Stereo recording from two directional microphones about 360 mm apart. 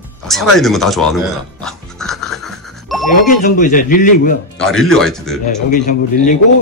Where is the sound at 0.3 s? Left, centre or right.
Centre.